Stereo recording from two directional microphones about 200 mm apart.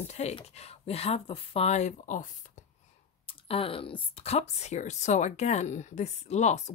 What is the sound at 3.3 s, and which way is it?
Speech, 25° left (ahead or behind).